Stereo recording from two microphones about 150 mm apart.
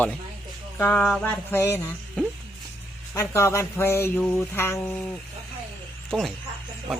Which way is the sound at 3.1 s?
20° left (ahead or behind).